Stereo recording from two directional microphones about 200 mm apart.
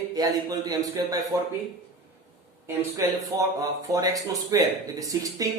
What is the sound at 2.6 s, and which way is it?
Speech, 15° right (ahead or behind).